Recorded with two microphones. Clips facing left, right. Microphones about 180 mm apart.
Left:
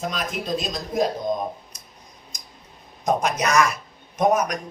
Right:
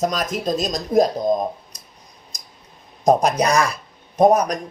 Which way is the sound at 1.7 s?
35° right (ahead or behind).